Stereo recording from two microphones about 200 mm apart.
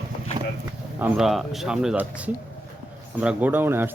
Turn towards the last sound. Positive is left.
turn(degrees=-10)  # may be behind; listen again after turning